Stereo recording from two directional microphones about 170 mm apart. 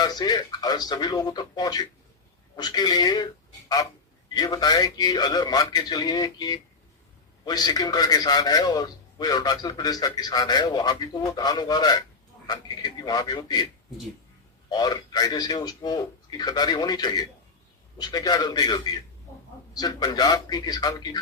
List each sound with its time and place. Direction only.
0.0 s a man's voice: 25° left (ahead or behind)
4.4 s a man's voice: 20° left (ahead or behind)
14.7 s a man's voice: 25° left (ahead or behind)